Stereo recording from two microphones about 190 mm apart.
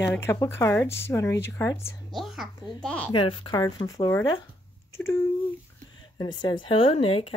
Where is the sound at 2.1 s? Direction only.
Centre (ahead or behind).